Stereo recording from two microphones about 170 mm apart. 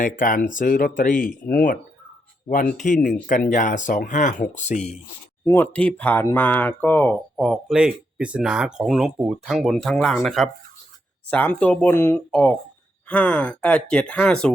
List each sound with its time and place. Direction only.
0.0 s speech: 50° left (ahead or behind)
5.5 s speech: 10° left (ahead or behind)